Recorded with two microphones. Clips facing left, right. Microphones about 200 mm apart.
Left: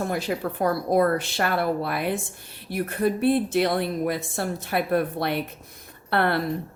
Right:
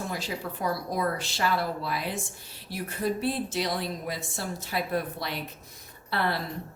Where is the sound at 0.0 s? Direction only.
55° left (ahead or behind).